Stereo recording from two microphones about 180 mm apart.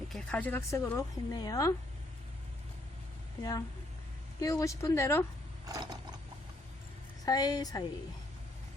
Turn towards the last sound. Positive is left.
turn(degrees=20)  # may be behind; listen again after turning